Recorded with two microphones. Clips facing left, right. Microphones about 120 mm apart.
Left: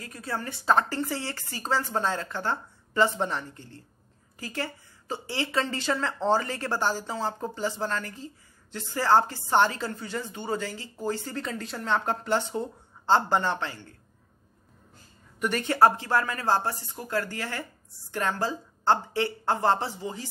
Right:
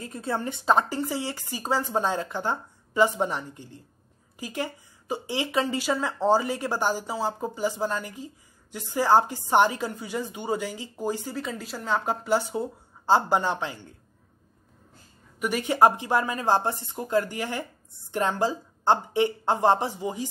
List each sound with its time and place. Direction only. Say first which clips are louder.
0.0 s a woman's voice: right 4 dB; 25° right (ahead or behind)
15.3 s a woman's voice: right 1 dB; 5° right (ahead or behind)